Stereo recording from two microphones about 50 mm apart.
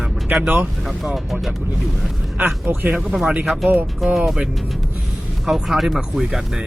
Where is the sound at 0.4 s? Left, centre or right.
Right.